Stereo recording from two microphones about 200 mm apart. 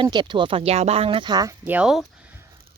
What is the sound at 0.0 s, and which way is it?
Speech, 25° right (ahead or behind).